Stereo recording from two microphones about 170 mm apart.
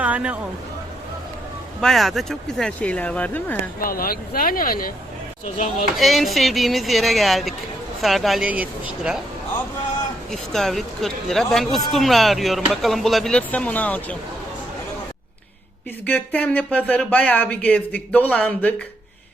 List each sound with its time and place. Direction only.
0.0 s a sound: 10° right (ahead or behind)
1.8 s speech: centre (ahead or behind)
3.8 s speech: 60° left (ahead or behind)
6.0 s speech: centre (ahead or behind)
10.3 s speech: centre (ahead or behind)
16.0 s speech: 10° left (ahead or behind)